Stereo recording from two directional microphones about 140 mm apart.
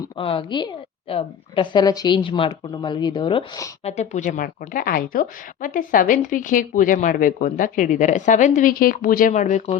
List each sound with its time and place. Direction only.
0.2 s a woman's voice: 40° left (ahead or behind)
3.8 s speech: 55° left (ahead or behind)